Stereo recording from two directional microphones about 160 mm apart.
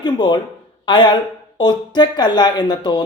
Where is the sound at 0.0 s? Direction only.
25° left (ahead or behind).